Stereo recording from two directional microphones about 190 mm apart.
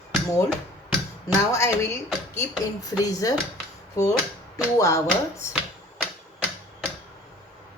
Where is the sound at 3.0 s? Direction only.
20° left (ahead or behind).